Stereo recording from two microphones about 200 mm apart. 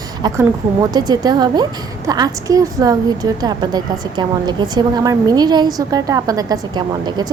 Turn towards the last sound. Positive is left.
turn(degrees=-20)  # may be behind; listen again after turning